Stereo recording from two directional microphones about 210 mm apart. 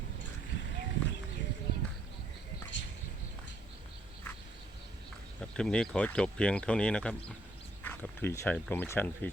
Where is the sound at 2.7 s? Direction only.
60° left (ahead or behind).